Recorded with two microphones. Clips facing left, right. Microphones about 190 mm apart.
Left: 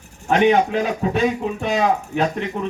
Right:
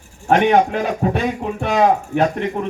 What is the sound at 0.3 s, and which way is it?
A man's voice, 55° right (ahead or behind).